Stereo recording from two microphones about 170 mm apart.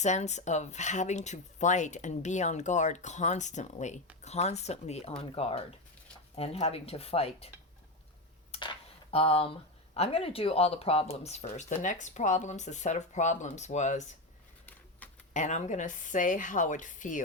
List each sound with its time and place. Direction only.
0.0 s speech: 45° left (ahead or behind)
9.1 s speech: 35° left (ahead or behind)
14.7 s a sound: 10° left (ahead or behind)
15.3 s speech: 45° left (ahead or behind)